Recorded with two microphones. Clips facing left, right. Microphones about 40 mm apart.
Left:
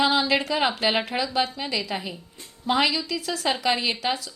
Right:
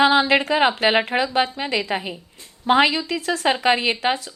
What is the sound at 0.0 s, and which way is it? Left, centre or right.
A woman's voice, right.